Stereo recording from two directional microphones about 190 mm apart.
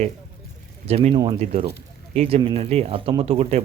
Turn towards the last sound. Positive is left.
turn(degrees=-30)  # may be behind; listen again after turning